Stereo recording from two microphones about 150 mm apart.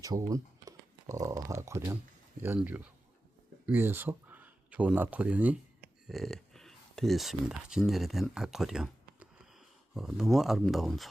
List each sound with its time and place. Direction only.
0.0 s speech: 25° right (ahead or behind)
2.6 s speech: 10° right (ahead or behind)
6.1 s speech: centre (ahead or behind)